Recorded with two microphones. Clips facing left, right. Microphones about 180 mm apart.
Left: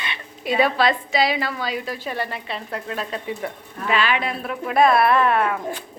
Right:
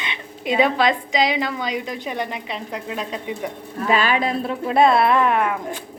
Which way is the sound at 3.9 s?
40° right (ahead or behind).